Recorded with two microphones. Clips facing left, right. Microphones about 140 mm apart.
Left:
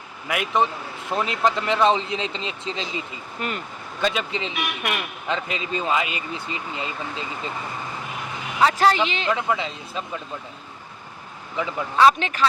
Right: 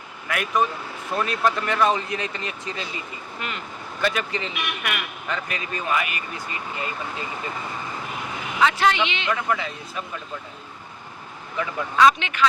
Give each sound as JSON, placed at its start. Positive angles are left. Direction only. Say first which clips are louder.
{"t": 0.3, "sound": "speech", "louder": "left 1 dB", "side_deg": 20}
{"t": 3.4, "sound": "a woman's voice", "louder": "left 4 dB", "side_deg": 40}
{"t": 4.0, "sound": "speech", "louder": "left 1 dB", "side_deg": 20}
{"t": 4.8, "sound": "speech", "louder": "left 2 dB", "side_deg": 30}
{"t": 8.6, "sound": "a woman's voice", "louder": "left 2 dB", "side_deg": 35}
{"t": 9.3, "sound": "speech", "louder": "left 1 dB", "side_deg": 20}
{"t": 11.5, "sound": "speech", "louder": "left 1 dB", "side_deg": 20}
{"t": 12.0, "sound": "a woman's voice", "louder": "left 1 dB", "side_deg": 35}